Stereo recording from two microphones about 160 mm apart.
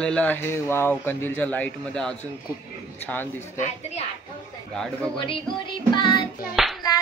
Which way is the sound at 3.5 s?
45° left (ahead or behind).